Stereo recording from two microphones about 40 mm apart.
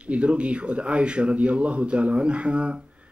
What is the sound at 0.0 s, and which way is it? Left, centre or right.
A man's voice, right.